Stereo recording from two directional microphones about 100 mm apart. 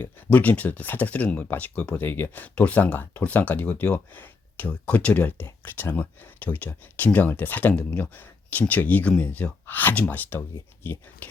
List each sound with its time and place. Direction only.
0.0 s speech: 15° left (ahead or behind)